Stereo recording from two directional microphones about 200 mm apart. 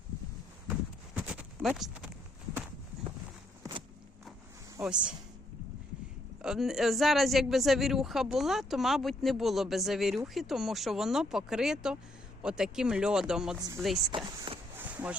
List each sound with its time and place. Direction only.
0.7 s a sound: 5° right (ahead or behind)
3.6 s walk: 25° right (ahead or behind)
4.8 s speech: 5° right (ahead or behind)
6.4 s speech: 5° right (ahead or behind)
13.6 s speech: 20° right (ahead or behind)
14.8 s a sound: 5° right (ahead or behind)